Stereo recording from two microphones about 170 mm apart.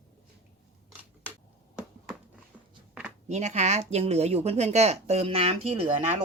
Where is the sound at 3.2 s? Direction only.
40° right (ahead or behind).